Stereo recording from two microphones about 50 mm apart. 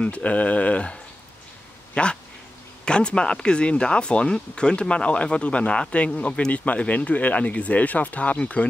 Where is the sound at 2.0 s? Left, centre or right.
Centre.